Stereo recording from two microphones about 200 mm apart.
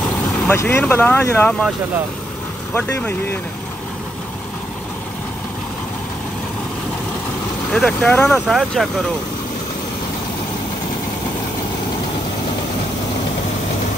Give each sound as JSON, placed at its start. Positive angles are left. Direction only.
{"t": 0.5, "sound": "speech", "side_deg": 10}
{"t": 2.7, "sound": "speech", "side_deg": 10}
{"t": 7.7, "sound": "speech", "side_deg": 5}